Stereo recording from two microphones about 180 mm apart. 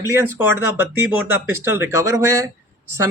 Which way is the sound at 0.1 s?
10° right (ahead or behind).